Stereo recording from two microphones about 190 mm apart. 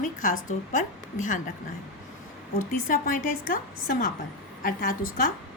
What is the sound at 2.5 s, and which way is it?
A woman's voice, 45° left (ahead or behind).